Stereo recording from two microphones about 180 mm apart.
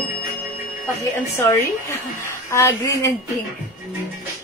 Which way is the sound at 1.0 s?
15° left (ahead or behind).